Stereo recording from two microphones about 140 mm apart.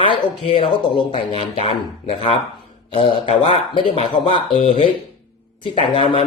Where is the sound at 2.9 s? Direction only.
40° left (ahead or behind).